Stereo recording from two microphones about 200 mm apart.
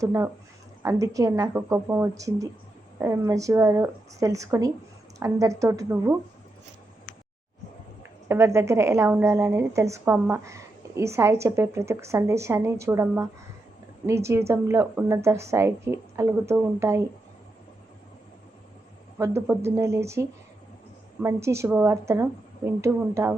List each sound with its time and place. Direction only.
0.0 s a woman's voice: 15° right (ahead or behind)
8.3 s a woman's voice: 15° right (ahead or behind)
19.2 s a woman's voice: 15° right (ahead or behind)